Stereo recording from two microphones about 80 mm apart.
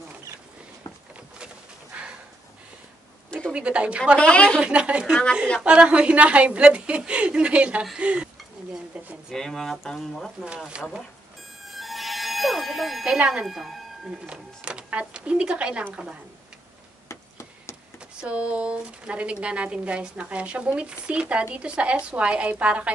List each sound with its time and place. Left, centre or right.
1.4 s bird: centre
3.3 s a sound: centre
3.5 s speech: centre
4.2 s speech: centre
4.6 s speech: centre
9.3 s speech: centre
10.7 s speech: centre
17.1 s a sound: left
18.1 s speech: centre